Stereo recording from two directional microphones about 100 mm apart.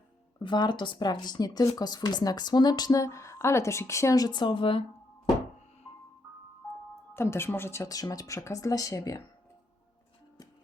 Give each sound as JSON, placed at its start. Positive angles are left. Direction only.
{"t": 0.4, "sound": "speech", "side_deg": 50}
{"t": 7.1, "sound": "speech", "side_deg": 25}